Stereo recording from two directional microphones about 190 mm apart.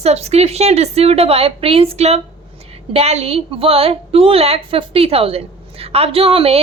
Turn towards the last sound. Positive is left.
turn(degrees=-30)  # may be behind; listen again after turning